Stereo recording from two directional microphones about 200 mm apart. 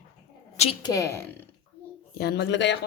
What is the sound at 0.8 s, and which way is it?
Speech, 15° left (ahead or behind).